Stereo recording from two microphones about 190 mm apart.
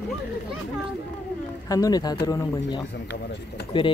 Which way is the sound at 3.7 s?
25° left (ahead or behind).